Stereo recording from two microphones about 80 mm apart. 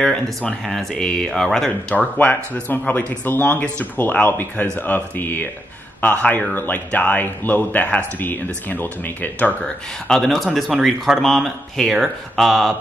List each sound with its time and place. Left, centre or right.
0.0 s speech: centre
2.0 s speech: left
10.0 s speech: centre